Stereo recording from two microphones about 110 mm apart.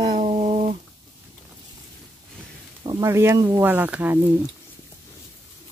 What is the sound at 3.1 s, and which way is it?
Speech, 25° right (ahead or behind).